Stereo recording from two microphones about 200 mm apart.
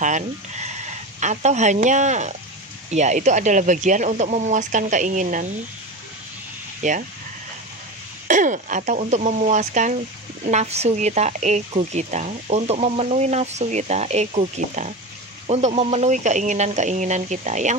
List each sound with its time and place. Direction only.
0.0 s speech: 35° right (ahead or behind)
6.8 s speech: 40° right (ahead or behind)
8.3 s speech: 40° right (ahead or behind)